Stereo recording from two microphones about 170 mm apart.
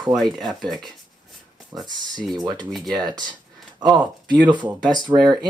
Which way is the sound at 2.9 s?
25° right (ahead or behind).